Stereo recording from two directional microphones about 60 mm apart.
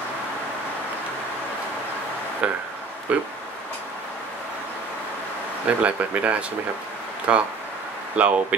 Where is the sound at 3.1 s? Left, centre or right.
Right.